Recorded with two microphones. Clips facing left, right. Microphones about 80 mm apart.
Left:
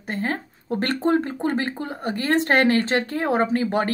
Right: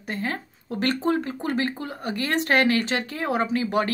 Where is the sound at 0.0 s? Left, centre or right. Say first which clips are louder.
Left 3 dB; left.